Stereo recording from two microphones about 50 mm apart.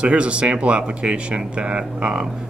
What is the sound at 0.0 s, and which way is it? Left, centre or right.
Speech, right.